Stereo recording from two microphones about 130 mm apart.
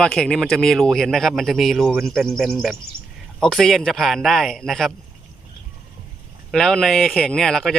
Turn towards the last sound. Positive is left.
turn(degrees=5)  # may be behind; listen again after turning